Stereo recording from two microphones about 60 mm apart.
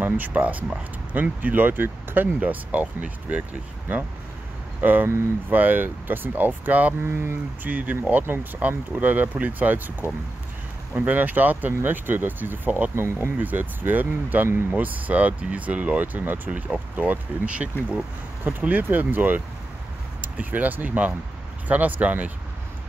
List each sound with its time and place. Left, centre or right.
0.0 s speech: right
7.0 s speech: right
7.6 s speech: right
12.9 s speech: right
13.4 s speech: right
18.4 s speech: right